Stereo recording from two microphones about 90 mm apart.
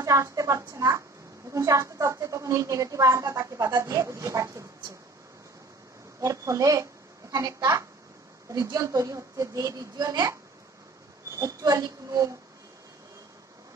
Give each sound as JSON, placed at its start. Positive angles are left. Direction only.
{"t": 0.0, "sound": "a woman's voice", "side_deg": -35}
{"t": 6.2, "sound": "a woman's voice", "side_deg": -35}
{"t": 11.3, "sound": "a woman's voice", "side_deg": -40}